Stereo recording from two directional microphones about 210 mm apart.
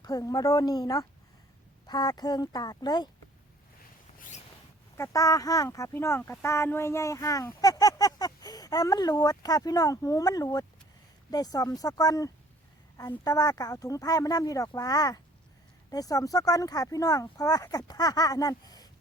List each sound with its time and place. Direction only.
0.0 s speech: 15° left (ahead or behind)
4.9 s speech: 15° left (ahead or behind)